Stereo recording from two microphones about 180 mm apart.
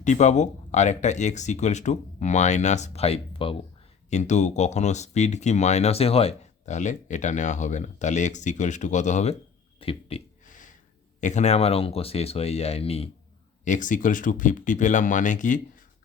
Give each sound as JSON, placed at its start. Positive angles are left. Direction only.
{"t": 0.0, "sound": "speech", "side_deg": 40}
{"t": 9.8, "sound": "a sound", "side_deg": 30}
{"t": 11.2, "sound": "speech", "side_deg": 40}
{"t": 13.7, "sound": "speech", "side_deg": 45}